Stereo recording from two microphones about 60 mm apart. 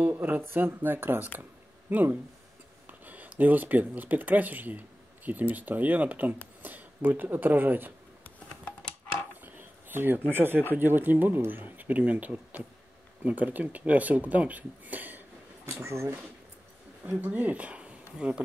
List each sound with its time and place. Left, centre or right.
0.0 s speech: right
1.4 s a sound: right
2.9 s speech: right
9.4 s a sound: right
10.3 s speech: right
15.6 s speech: right
17.2 s speech: right